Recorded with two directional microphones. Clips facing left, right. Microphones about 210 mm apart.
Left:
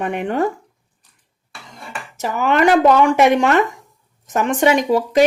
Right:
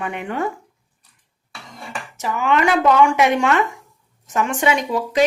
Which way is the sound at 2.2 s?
40° left (ahead or behind).